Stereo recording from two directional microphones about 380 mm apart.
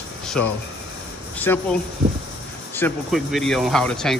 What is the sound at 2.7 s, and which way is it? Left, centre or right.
Speech, centre.